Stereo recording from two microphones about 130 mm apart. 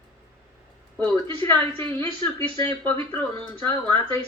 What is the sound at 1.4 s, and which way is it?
Speech, 15° left (ahead or behind).